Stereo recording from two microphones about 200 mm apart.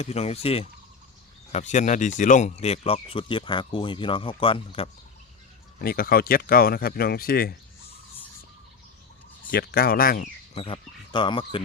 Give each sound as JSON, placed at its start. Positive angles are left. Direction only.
{"t": 0.0, "sound": "speech", "side_deg": 30}
{"t": 5.8, "sound": "speech", "side_deg": 50}
{"t": 9.5, "sound": "speech", "side_deg": 50}
{"t": 10.5, "sound": "speech", "side_deg": 30}